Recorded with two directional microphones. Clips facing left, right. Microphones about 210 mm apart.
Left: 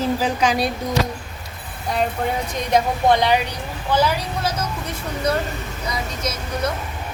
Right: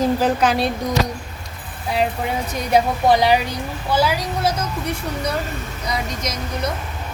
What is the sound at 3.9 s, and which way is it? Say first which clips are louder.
Speech: even; 10° right (ahead or behind).